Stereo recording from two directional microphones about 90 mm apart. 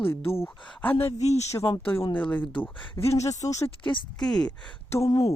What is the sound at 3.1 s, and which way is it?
Speech, 35° left (ahead or behind).